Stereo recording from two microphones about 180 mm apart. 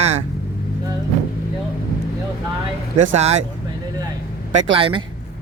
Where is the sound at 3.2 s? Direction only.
35° right (ahead or behind).